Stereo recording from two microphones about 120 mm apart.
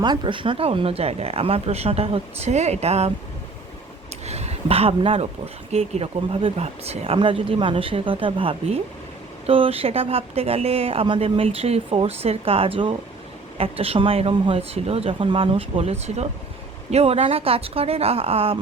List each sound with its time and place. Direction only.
0.0 s speech: 40° right (ahead or behind); by 3.1 s 60° right (ahead or behind)
4.3 s speech: 65° right (ahead or behind)
5.7 s speech: 65° right (ahead or behind)
7.2 s speech: 45° right (ahead or behind)